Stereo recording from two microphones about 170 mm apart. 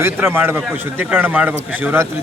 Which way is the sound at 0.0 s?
10° right (ahead or behind).